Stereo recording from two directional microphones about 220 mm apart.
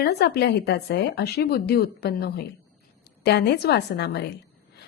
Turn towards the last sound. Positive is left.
turn(degrees=50)  # may be behind; listen again after turning